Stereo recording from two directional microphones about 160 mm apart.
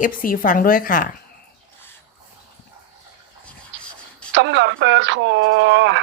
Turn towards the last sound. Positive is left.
turn(degrees=-90)